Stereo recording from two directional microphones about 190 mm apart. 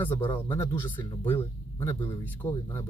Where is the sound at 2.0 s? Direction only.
10° left (ahead or behind).